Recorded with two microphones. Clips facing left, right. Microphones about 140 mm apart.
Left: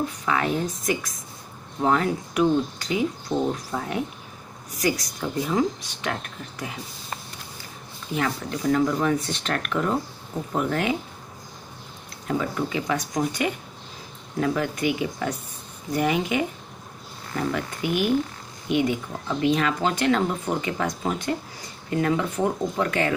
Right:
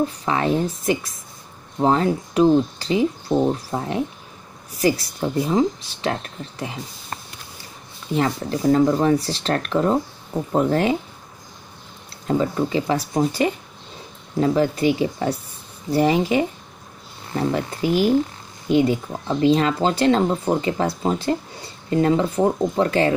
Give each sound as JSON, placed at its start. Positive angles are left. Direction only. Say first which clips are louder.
{"t": 0.2, "sound": "speech", "louder": "right 4 dB", "side_deg": -30}
{"t": 8.1, "sound": "speech", "louder": "right 5 dB", "side_deg": -30}
{"t": 12.3, "sound": "speech", "louder": "right 5 dB", "side_deg": -30}